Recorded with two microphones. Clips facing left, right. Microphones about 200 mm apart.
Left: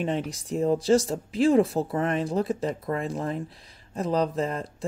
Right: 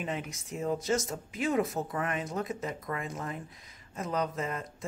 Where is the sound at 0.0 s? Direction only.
35° left (ahead or behind).